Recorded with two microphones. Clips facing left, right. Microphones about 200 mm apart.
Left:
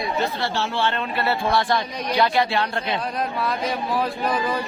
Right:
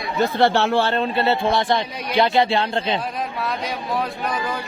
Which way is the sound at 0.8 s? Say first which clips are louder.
Right 4 dB; 35° right (ahead or behind).